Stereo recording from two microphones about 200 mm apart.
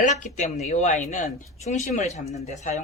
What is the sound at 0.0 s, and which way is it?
Speech, 35° left (ahead or behind).